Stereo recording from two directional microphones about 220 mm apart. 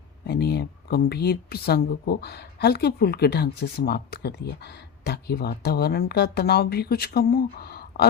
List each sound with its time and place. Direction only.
0.3 s speech: 45° left (ahead or behind)